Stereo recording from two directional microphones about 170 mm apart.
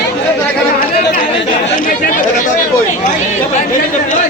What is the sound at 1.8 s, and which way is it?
Speech, 50° left (ahead or behind).